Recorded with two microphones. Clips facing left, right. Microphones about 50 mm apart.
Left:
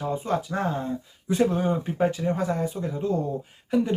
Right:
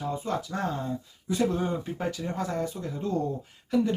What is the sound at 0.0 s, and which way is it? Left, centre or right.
Speech, left.